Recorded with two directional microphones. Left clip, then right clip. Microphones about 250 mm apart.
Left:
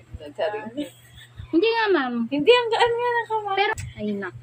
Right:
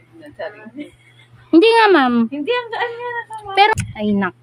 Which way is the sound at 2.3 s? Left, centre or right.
Left.